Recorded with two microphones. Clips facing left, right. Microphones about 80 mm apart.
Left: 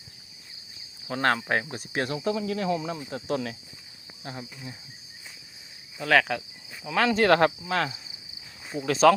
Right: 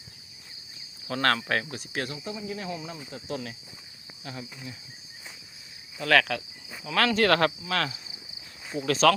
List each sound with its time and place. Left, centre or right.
1.0 s speech: centre
1.7 s speech: left
2.2 s speech: left
4.2 s speech: left
6.0 s speech: centre
9.0 s speech: centre